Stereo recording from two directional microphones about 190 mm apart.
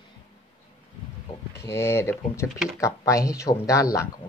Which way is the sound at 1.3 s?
25° left (ahead or behind).